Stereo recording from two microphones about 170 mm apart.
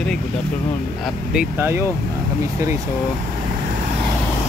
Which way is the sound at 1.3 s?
10° right (ahead or behind).